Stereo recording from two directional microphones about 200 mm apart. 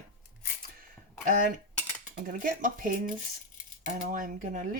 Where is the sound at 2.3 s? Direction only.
45° right (ahead or behind).